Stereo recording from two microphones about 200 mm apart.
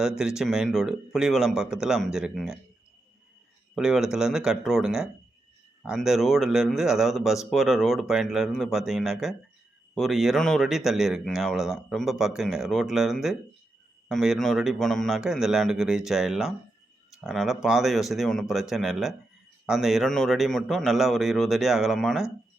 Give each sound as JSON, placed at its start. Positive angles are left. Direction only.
{"t": 0.0, "sound": "speech", "side_deg": -5}
{"t": 3.8, "sound": "speech", "side_deg": -5}